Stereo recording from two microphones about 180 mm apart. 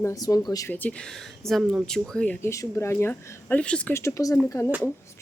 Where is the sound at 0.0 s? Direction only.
20° left (ahead or behind).